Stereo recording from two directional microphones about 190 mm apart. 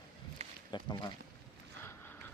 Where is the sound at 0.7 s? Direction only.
20° left (ahead or behind).